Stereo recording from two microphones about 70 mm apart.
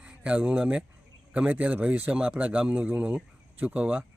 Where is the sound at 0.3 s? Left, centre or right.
Centre.